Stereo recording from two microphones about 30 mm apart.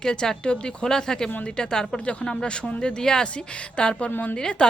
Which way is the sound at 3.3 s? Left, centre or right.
Left.